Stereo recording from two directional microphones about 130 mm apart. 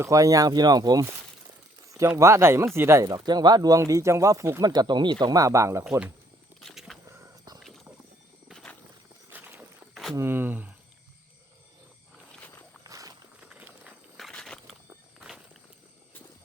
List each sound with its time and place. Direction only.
0.0 s speech: 25° right (ahead or behind)
2.0 s speech: 20° right (ahead or behind)
4.7 s speech: 30° right (ahead or behind)
6.6 s a sound: centre (ahead or behind)
7.1 s a sound: 25° right (ahead or behind)
8.4 s a sound: 5° left (ahead or behind)
9.3 s vehicle: 15° right (ahead or behind)
9.9 s a sound: centre (ahead or behind)
10.2 s speech: 15° right (ahead or behind)
12.8 s walk: 30° right (ahead or behind)
13.4 s clip-clop: 10° right (ahead or behind)
14.2 s walk: 5° left (ahead or behind)